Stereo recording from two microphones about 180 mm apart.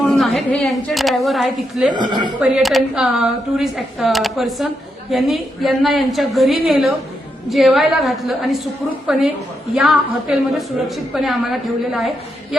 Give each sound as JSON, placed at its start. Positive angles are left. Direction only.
{"t": 0.0, "sound": "a woman's voice", "side_deg": 0}
{"t": 1.9, "sound": "speech", "side_deg": -25}
{"t": 2.4, "sound": "speech", "side_deg": 0}